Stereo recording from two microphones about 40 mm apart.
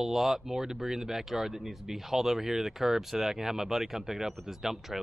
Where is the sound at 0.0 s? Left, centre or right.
Centre.